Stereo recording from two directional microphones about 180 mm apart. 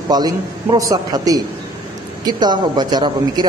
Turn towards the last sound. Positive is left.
turn(degrees=-25)  # may be behind; listen again after turning